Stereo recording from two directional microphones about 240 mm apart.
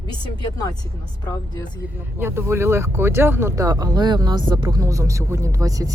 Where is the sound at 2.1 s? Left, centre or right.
Centre.